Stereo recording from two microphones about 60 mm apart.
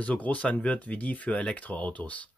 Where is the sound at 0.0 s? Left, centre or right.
Left.